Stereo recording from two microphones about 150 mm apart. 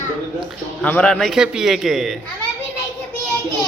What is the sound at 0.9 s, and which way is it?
Speech, 10° left (ahead or behind).